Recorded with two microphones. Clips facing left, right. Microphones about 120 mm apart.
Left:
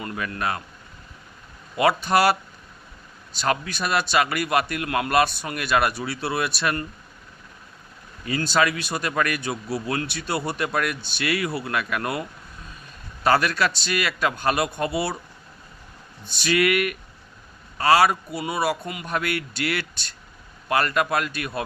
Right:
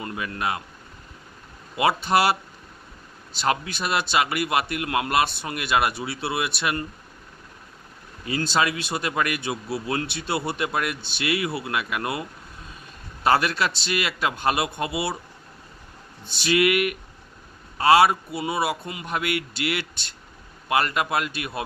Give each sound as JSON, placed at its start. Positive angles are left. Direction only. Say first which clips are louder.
{"t": 0.0, "sound": "a man's voice", "louder": "even", "side_deg": -20}
{"t": 1.7, "sound": "a man's voice", "louder": "left 1 dB", "side_deg": -25}
{"t": 8.2, "sound": "a man's voice", "louder": "left 1 dB", "side_deg": -25}
{"t": 13.2, "sound": "a man's voice", "louder": "left 1 dB", "side_deg": -25}
{"t": 16.2, "sound": "a man's voice", "louder": "right 1 dB", "side_deg": -25}